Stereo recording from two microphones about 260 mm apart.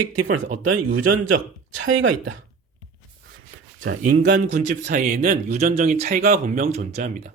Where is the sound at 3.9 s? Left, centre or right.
Right.